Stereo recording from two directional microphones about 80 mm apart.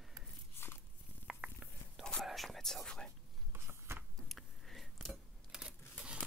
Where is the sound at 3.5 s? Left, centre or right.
Right.